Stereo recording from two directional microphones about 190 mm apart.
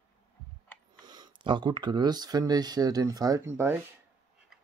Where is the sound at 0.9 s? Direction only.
20° right (ahead or behind).